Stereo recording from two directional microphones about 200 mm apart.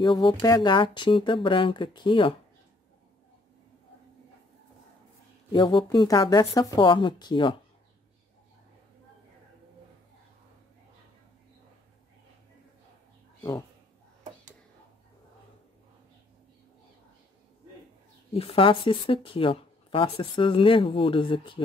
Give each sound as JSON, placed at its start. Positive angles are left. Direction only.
{"t": 0.0, "sound": "speech", "side_deg": 20}
{"t": 5.5, "sound": "speech", "side_deg": 20}
{"t": 13.4, "sound": "speech", "side_deg": 15}
{"t": 18.3, "sound": "speech", "side_deg": 25}